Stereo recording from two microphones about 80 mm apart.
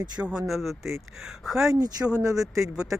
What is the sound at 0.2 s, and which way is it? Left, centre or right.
Speech, centre.